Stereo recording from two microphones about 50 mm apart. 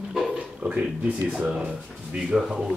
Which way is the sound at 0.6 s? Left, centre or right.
Right.